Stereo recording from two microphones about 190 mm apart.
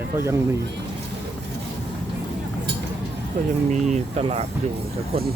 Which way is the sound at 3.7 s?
40° right (ahead or behind).